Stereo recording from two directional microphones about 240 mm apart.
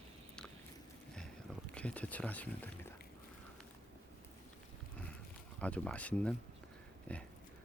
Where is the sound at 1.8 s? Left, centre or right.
Centre.